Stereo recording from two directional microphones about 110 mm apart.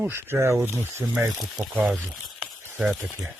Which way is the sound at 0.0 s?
20° right (ahead or behind).